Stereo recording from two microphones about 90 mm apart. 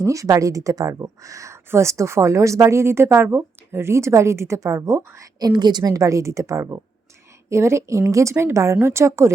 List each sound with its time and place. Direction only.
0.0 s a woman's voice: 35° right (ahead or behind); by 5.9 s 50° right (ahead or behind)
5.9 s a woman's voice: 35° right (ahead or behind)